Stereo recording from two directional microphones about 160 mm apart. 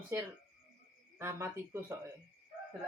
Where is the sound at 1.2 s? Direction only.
15° right (ahead or behind).